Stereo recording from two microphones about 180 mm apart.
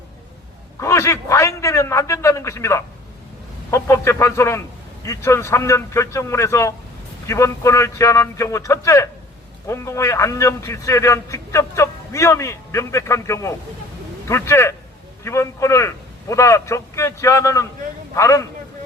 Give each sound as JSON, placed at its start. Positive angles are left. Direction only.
{"t": 0.8, "sound": "a man's voice", "side_deg": 15}